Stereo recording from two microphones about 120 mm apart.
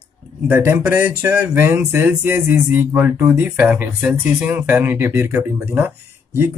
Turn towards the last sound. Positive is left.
turn(degrees=-20)  # may be behind; listen again after turning